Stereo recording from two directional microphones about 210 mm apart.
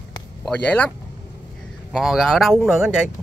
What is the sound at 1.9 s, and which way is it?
Speech, centre (ahead or behind).